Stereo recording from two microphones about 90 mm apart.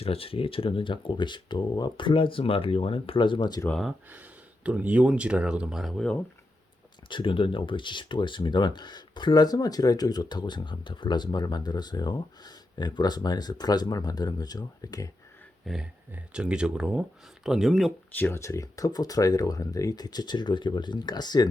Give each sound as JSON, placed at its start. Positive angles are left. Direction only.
{"t": 0.0, "sound": "speech", "side_deg": 90}
{"t": 4.1, "sound": "speech", "side_deg": -15}
{"t": 7.1, "sound": "speech", "side_deg": 70}
{"t": 15.6, "sound": "speech", "side_deg": -5}
{"t": 18.1, "sound": "speech", "side_deg": 25}